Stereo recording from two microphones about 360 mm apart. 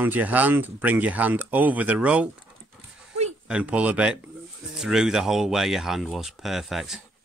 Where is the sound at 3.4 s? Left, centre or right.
Centre.